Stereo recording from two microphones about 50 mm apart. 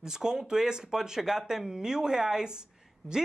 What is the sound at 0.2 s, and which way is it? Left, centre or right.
Speech, centre.